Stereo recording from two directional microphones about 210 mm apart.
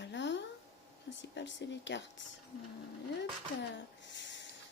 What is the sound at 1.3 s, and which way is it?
Speech, 55° left (ahead or behind).